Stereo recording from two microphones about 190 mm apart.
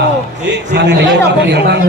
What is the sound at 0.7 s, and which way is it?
A man's voice, 65° right (ahead or behind).